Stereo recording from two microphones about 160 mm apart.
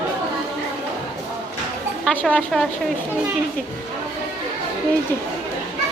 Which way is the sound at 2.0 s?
Centre (ahead or behind).